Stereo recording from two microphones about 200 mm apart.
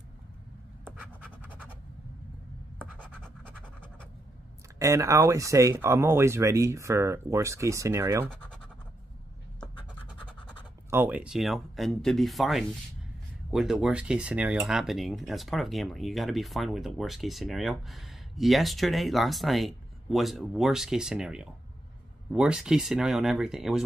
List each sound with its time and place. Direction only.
0.8 s scratch: 5° right (ahead or behind)
2.8 s scratch: 10° right (ahead or behind)
4.7 s speech: 15° right (ahead or behind)
10.9 s speech: 10° right (ahead or behind)